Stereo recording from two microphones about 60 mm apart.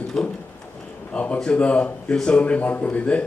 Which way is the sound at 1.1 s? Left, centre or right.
Left.